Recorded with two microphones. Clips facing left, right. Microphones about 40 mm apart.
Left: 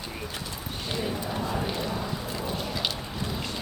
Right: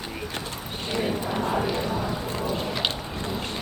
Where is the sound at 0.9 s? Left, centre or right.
Right.